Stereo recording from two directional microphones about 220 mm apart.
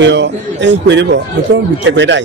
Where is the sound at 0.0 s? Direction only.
55° right (ahead or behind).